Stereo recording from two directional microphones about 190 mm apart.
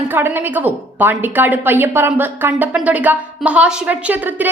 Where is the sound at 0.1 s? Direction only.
10° right (ahead or behind).